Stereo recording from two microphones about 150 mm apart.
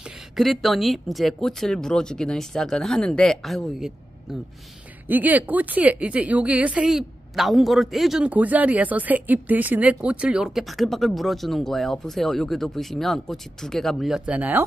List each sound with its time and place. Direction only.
0.4 s a woman's voice: centre (ahead or behind)
5.0 s a woman's voice: 10° right (ahead or behind)